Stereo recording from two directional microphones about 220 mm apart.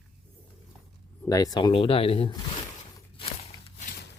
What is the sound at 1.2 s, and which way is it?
Speech, 15° left (ahead or behind).